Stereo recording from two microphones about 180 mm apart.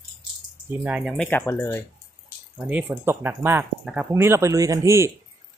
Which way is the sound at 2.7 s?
10° right (ahead or behind).